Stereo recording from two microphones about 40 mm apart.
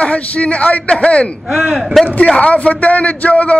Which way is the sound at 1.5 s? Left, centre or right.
Right.